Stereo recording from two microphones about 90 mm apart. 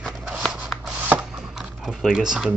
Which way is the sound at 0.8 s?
15° right (ahead or behind).